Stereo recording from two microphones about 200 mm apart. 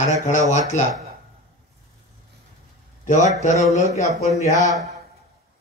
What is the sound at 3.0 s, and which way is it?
Speech, 35° left (ahead or behind).